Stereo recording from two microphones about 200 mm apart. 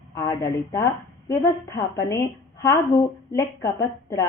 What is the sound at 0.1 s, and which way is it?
A woman's voice, 15° left (ahead or behind).